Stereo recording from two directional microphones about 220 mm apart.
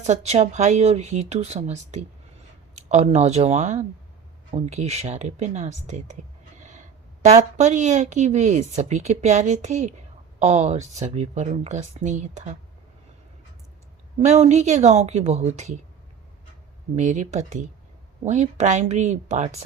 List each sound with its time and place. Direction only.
0.0 s speech: 30° right (ahead or behind)
14.2 s speech: 30° right (ahead or behind)
16.9 s speech: 35° right (ahead or behind)